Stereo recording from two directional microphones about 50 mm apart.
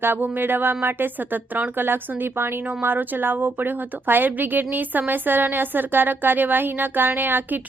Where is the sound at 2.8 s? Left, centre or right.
Right.